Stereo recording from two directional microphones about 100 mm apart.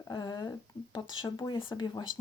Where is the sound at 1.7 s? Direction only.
40° left (ahead or behind).